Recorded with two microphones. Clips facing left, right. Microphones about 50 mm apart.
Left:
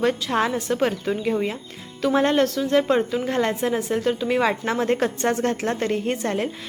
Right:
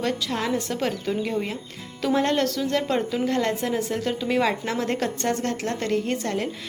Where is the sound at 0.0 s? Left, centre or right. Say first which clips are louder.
Left 5 dB; centre.